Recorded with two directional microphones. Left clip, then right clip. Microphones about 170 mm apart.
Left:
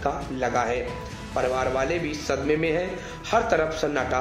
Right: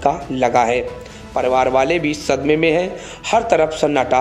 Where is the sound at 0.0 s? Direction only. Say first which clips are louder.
Right 10 dB; 45° right (ahead or behind).